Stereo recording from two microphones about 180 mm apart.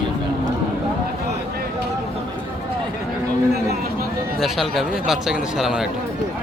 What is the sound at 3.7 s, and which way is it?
Run, 55° right (ahead or behind).